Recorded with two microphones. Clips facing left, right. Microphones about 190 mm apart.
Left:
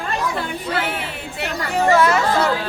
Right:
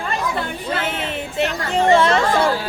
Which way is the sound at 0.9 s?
20° right (ahead or behind).